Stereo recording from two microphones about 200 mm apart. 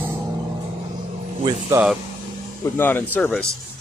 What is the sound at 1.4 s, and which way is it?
Speech, 15° right (ahead or behind).